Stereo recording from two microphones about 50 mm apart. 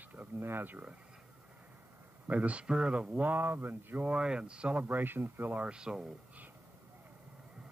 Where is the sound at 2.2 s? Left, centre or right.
Right.